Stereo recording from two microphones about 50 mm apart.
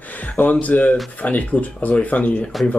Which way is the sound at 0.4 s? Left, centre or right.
Left.